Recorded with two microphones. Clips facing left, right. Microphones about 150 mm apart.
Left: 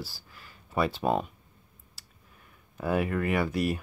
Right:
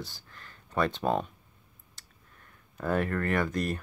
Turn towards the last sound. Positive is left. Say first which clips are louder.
# left 2 dB
turn(degrees=5)  # may be behind; listen again after turning